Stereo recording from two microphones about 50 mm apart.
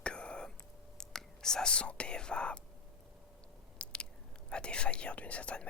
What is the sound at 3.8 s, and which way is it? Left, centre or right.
Squish, left.